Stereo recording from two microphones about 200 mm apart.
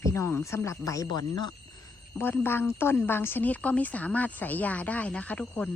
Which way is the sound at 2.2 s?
10° left (ahead or behind).